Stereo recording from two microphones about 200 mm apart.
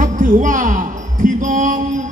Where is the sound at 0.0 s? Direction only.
40° right (ahead or behind).